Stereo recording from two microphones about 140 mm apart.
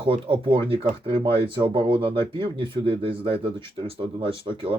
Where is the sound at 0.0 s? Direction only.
40° right (ahead or behind).